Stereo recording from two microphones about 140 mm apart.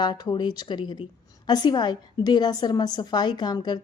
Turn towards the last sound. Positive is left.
turn(degrees=30)  # may be behind; listen again after turning